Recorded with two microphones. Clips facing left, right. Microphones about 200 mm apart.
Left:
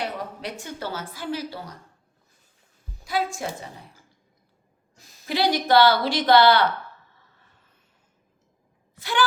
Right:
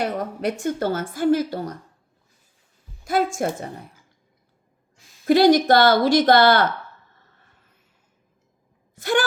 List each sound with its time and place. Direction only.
0.0 s a woman's voice: 50° right (ahead or behind)
3.0 s a woman's voice: 50° right (ahead or behind)
5.2 s a woman's voice: 50° right (ahead or behind)
9.0 s speech: 45° right (ahead or behind)